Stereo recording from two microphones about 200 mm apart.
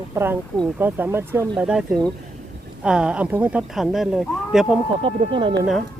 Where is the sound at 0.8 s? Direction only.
10° right (ahead or behind).